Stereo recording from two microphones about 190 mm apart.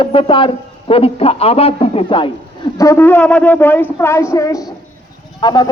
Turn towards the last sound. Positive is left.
turn(degrees=20)  # may be behind; listen again after turning